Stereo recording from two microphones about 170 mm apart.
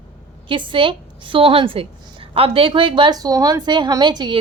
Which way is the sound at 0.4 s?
30° right (ahead or behind).